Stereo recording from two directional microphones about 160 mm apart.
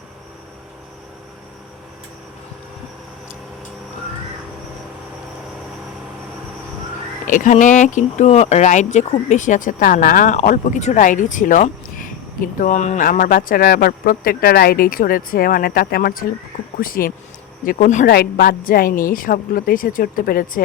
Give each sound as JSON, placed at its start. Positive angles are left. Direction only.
{"t": 7.3, "sound": "speech", "side_deg": 55}
{"t": 18.0, "sound": "speech", "side_deg": 75}